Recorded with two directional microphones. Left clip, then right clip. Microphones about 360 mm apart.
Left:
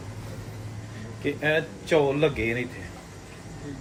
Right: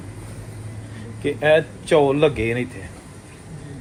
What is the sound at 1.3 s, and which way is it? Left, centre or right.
Speech, centre.